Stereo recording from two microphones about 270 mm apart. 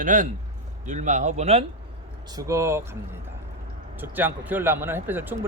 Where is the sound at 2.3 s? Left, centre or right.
Centre.